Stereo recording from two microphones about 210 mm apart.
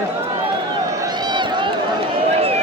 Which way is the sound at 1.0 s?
20° right (ahead or behind).